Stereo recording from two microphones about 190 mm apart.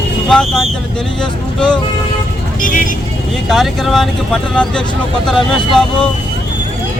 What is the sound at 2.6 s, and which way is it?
Speech, 45° left (ahead or behind).